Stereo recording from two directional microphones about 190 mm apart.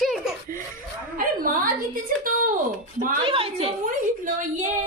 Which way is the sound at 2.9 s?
30° right (ahead or behind).